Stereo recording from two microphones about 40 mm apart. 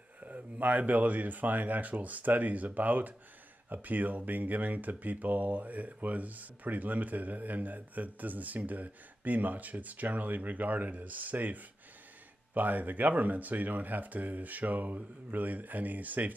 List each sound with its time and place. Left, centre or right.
0.2 s speech: right